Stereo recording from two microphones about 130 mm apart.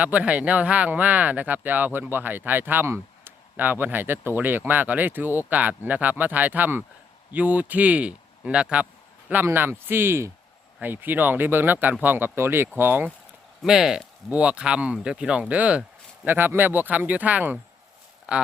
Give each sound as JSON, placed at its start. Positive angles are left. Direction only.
{"t": 0.0, "sound": "speech", "side_deg": -10}
{"t": 13.6, "sound": "speech", "side_deg": -5}